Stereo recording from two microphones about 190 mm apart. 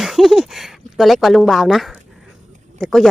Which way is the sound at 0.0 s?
Centre (ahead or behind).